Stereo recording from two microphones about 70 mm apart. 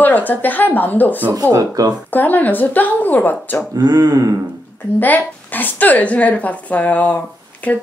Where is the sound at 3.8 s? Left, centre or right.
Right.